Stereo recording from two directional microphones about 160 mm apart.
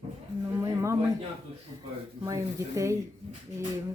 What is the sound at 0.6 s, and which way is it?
Speech, 20° right (ahead or behind).